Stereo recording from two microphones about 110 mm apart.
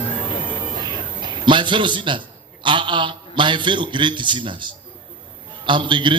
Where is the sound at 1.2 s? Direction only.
45° right (ahead or behind).